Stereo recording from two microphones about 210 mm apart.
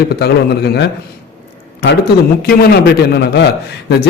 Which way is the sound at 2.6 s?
50° left (ahead or behind).